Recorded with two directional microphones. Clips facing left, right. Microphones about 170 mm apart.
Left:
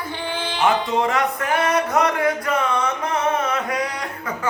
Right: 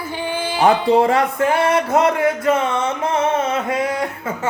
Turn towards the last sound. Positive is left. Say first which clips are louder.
# right 4 dB
turn(degrees=-25)  # may be behind; listen again after turning